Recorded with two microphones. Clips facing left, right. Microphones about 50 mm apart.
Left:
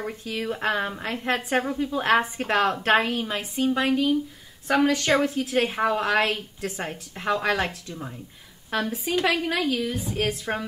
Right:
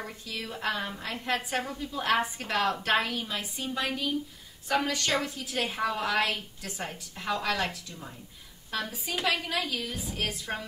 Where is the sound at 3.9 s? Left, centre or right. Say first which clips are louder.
Left 9 dB; centre.